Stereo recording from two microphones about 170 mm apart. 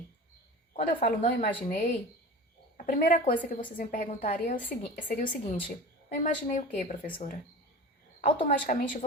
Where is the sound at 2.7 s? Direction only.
55° left (ahead or behind).